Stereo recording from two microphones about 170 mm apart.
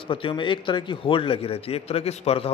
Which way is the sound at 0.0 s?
30° left (ahead or behind).